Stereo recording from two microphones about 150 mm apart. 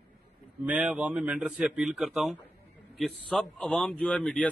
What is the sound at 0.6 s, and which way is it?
A man's voice, 10° right (ahead or behind).